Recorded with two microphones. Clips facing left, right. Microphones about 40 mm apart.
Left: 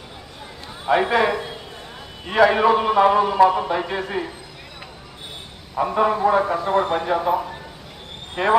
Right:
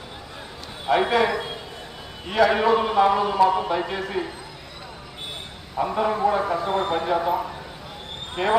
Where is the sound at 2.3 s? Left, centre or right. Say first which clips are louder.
Left 3 dB; centre.